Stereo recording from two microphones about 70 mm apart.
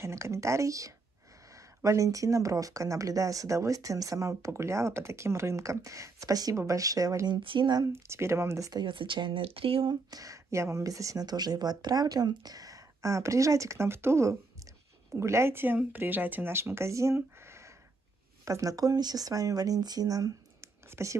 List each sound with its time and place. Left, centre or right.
0.0 s speech: right
6.5 s speech: right
7.2 s speech: right
7.9 s speech: right
9.8 s speech: right
20.9 s speech: right